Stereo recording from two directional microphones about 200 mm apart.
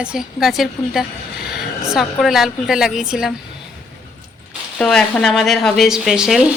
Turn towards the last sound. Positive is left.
turn(degrees=-5)  # may be behind; listen again after turning